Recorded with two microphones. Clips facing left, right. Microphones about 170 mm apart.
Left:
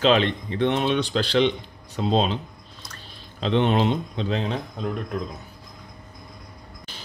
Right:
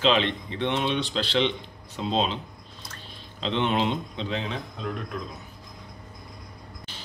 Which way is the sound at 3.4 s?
45° left (ahead or behind).